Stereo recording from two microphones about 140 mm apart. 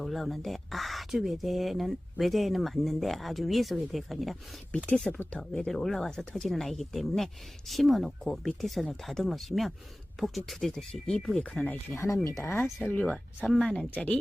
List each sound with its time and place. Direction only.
0.0 s speech: centre (ahead or behind)
11.9 s speech: 25° left (ahead or behind)